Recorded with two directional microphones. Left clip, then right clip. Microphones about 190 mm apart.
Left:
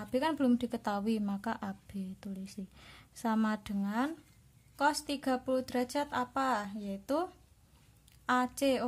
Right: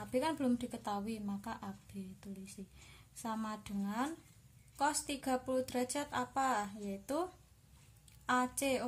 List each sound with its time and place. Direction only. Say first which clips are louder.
0.1 s speech: left 4 dB; 35° left (ahead or behind)
8.3 s speech: left 4 dB; 35° left (ahead or behind)